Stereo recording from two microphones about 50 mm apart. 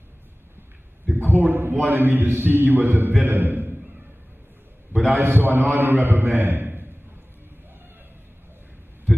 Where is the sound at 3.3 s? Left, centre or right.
Right.